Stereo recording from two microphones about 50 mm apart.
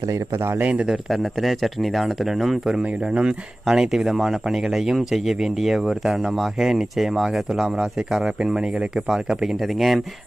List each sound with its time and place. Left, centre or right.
0.3 s speech: right
0.6 s a man's voice: right
0.9 s speech: centre
3.0 s speech: centre
3.7 s speech: centre